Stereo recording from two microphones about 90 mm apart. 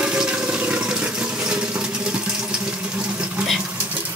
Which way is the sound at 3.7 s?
15° right (ahead or behind).